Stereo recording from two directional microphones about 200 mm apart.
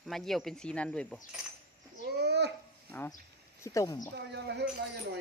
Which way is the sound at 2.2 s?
55° right (ahead or behind).